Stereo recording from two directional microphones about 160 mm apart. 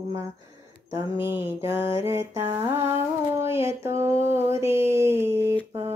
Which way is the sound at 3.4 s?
15° right (ahead or behind).